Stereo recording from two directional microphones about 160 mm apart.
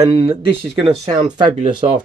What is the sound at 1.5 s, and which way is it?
Speech, 35° right (ahead or behind).